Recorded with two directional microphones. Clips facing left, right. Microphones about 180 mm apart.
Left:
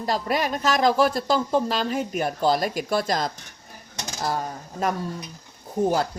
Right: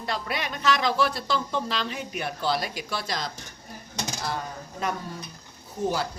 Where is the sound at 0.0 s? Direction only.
40° left (ahead or behind).